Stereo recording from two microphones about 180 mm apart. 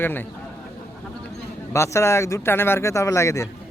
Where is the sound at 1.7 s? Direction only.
15° left (ahead or behind).